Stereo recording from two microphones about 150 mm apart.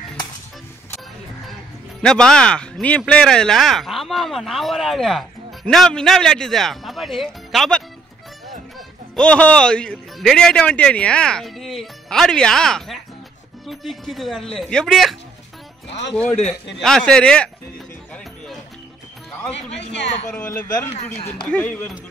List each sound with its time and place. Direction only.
2.0 s speech: 5° left (ahead or behind)
9.1 s speech: 10° left (ahead or behind)
16.4 s speech: 5° left (ahead or behind)
19.7 s speech: 45° left (ahead or behind)
20.5 s a man's voice: 65° left (ahead or behind)
21.5 s speech: 10° left (ahead or behind)